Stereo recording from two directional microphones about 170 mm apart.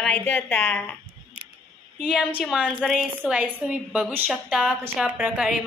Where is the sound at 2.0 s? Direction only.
5° right (ahead or behind).